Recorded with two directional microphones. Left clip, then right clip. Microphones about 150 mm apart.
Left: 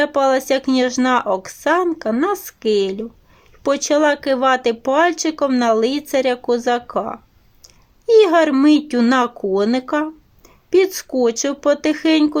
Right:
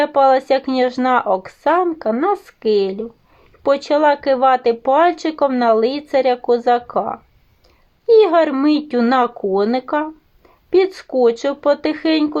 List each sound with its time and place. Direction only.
0.0 s speech: 15° left (ahead or behind)